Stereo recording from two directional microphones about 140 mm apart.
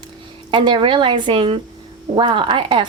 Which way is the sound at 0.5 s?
35° right (ahead or behind).